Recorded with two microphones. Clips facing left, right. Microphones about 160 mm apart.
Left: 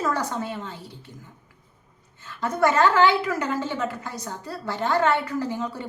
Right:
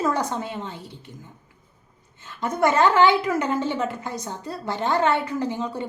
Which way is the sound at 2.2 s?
20° right (ahead or behind).